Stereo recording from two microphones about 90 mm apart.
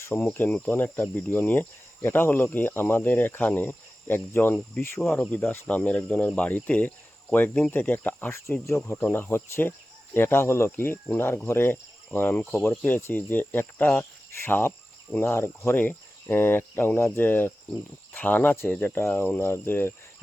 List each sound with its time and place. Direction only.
0.3 s speech: 20° left (ahead or behind)